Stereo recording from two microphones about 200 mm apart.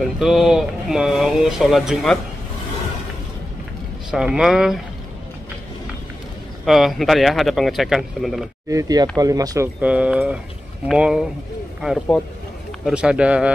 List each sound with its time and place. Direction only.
0.0 s speech: centre (ahead or behind)
4.1 s speech: 5° right (ahead or behind)
6.6 s speech: centre (ahead or behind)
8.6 s speech: 15° right (ahead or behind)